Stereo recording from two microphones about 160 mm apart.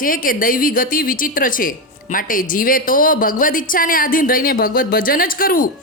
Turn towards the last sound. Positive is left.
turn(degrees=65)  # may be behind; listen again after turning